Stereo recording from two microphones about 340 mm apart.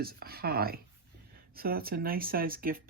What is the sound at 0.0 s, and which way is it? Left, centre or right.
Speech, right.